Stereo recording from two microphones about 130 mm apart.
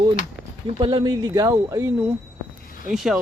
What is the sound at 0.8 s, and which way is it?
Speech, 35° right (ahead or behind).